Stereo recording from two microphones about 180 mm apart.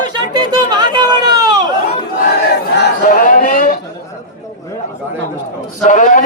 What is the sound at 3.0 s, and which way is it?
Speech, 45° left (ahead or behind).